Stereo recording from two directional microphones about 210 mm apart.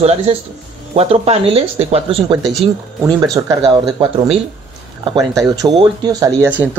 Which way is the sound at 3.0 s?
15° right (ahead or behind).